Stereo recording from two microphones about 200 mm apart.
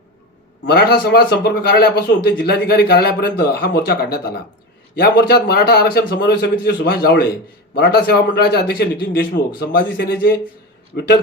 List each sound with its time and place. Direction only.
0.6 s a man's voice: 55° left (ahead or behind)